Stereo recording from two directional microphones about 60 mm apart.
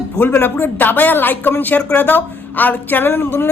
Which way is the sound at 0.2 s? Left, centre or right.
Left.